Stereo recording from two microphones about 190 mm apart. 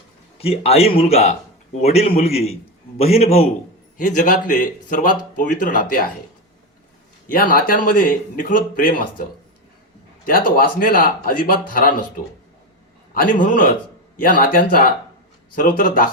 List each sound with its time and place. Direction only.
0.3 s a man's voice: 30° left (ahead or behind); by 6.1 s 45° left (ahead or behind)
7.3 s speech: 45° left (ahead or behind)
10.2 s speech: 50° left (ahead or behind)
13.1 s speech: 45° left (ahead or behind)